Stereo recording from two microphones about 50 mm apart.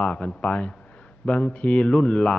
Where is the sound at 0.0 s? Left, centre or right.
Left.